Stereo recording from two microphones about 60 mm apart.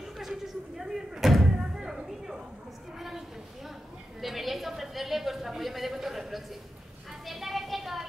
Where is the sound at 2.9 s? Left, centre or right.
Centre.